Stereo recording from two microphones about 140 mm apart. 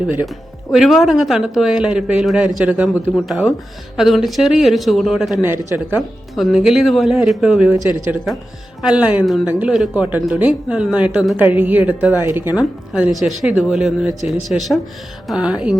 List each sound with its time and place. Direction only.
0.7 s speech: centre (ahead or behind)
5.5 s speech: 15° right (ahead or behind)
6.0 s speech: centre (ahead or behind)
7.7 s speech: 15° right (ahead or behind)